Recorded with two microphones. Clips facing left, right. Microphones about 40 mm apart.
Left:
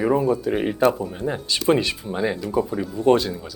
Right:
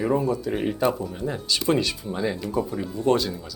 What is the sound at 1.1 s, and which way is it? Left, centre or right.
Speech, left.